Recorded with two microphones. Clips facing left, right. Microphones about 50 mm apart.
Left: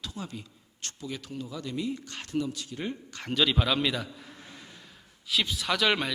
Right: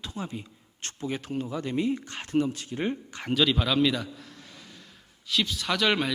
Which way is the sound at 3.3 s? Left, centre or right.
Centre.